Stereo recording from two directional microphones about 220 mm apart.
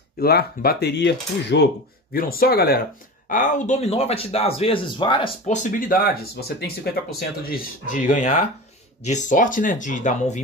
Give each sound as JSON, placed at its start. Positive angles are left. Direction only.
{"t": 0.2, "sound": "speech", "side_deg": 45}
{"t": 5.6, "sound": "speech", "side_deg": 40}